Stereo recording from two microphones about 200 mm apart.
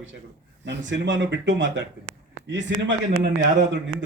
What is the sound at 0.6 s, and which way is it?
A man's voice, 60° right (ahead or behind).